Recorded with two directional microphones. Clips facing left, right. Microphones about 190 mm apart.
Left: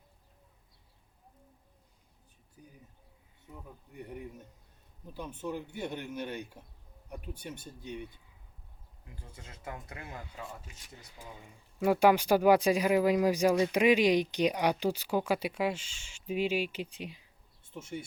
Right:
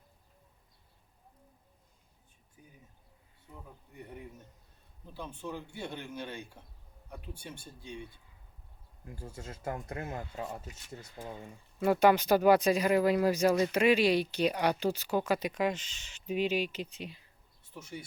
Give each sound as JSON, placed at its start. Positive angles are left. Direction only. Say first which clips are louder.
{"t": 5.1, "sound": "speech", "louder": "left 3 dB", "side_deg": 15}
{"t": 9.2, "sound": "speech", "louder": "right 6 dB", "side_deg": -45}
{"t": 11.2, "sound": "speech", "louder": "right 6 dB", "side_deg": -50}
{"t": 11.8, "sound": "speech", "louder": "even", "side_deg": 10}
{"t": 17.6, "sound": "insect", "louder": "left 4 dB", "side_deg": 25}